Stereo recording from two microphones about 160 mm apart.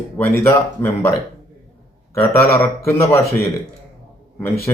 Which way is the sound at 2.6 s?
15° left (ahead or behind).